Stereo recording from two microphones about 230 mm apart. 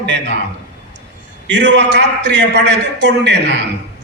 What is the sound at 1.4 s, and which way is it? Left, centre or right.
A man's voice, right.